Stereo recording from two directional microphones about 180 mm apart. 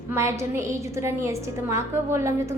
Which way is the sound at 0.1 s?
15° right (ahead or behind).